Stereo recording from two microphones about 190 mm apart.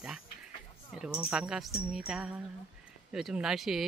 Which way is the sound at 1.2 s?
5° right (ahead or behind).